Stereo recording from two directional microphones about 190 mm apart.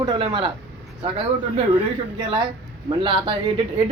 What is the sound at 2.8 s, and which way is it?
Speech, 25° right (ahead or behind).